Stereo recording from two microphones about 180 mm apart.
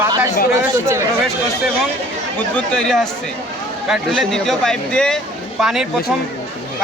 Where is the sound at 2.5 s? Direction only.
5° left (ahead or behind).